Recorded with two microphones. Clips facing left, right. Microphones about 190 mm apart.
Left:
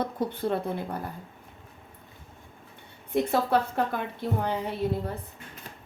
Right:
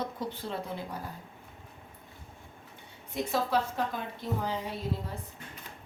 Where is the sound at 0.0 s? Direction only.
55° left (ahead or behind).